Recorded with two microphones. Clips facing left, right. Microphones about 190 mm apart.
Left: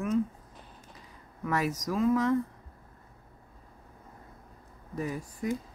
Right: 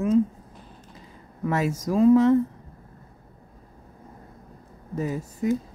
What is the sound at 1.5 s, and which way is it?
Speech, 25° right (ahead or behind).